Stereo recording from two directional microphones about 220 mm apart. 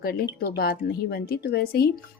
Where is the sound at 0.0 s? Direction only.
45° left (ahead or behind).